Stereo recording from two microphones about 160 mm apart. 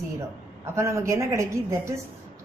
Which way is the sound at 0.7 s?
20° right (ahead or behind).